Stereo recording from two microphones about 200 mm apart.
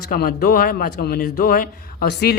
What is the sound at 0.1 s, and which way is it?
A man's voice, 50° left (ahead or behind).